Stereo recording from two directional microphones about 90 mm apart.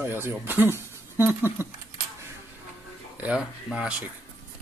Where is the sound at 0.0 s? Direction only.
25° right (ahead or behind).